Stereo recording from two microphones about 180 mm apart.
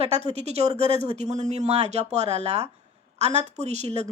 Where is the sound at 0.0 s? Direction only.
35° right (ahead or behind).